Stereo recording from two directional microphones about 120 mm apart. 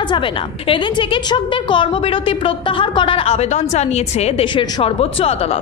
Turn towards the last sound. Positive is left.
turn(degrees=55)  # may be behind; listen again after turning